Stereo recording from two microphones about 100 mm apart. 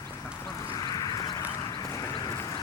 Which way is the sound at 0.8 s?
40° left (ahead or behind).